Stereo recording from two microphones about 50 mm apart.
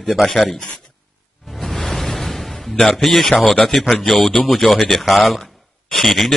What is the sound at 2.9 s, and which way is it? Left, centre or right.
A man's voice, centre.